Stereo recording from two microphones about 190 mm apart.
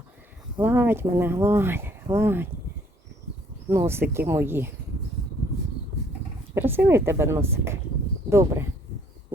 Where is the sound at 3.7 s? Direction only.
15° right (ahead or behind).